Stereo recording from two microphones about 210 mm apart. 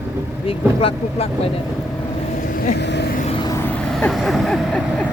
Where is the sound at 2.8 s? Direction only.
55° left (ahead or behind).